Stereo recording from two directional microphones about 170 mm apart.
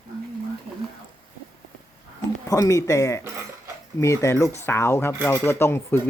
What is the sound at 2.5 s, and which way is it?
Speech, 20° left (ahead or behind).